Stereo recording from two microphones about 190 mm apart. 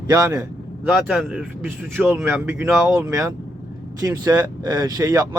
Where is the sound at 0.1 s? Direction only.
20° right (ahead or behind).